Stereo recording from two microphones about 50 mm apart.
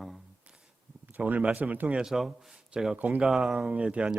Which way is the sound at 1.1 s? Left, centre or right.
Right.